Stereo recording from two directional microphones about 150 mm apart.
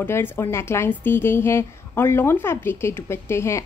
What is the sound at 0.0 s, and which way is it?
A woman's voice, 15° left (ahead or behind).